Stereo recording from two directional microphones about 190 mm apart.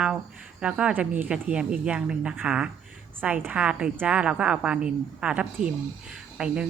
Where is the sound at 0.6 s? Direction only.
5° right (ahead or behind).